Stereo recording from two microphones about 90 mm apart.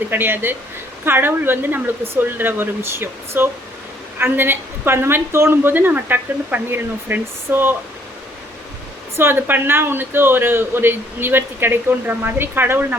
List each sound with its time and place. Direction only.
0.1 s speech: 25° right (ahead or behind)
9.1 s speech: 25° right (ahead or behind)